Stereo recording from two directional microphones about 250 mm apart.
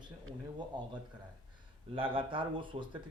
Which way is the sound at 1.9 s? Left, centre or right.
Right.